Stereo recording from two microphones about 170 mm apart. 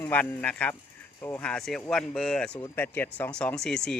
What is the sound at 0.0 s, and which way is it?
Speech, 10° left (ahead or behind).